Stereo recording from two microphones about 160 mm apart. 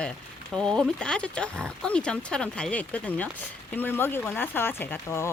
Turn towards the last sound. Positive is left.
turn(degrees=15)  # may be behind; listen again after turning